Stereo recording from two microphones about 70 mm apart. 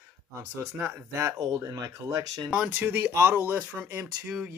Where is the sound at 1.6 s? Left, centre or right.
Right.